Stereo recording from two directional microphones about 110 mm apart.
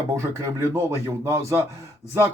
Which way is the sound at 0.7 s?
25° right (ahead or behind).